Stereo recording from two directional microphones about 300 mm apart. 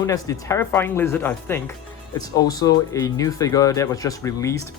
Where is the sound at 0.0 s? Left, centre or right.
Centre.